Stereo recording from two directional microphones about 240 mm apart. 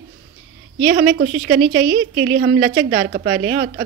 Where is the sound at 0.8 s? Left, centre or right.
Right.